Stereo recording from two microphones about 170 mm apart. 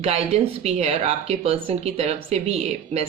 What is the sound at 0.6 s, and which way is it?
Speech, 40° right (ahead or behind).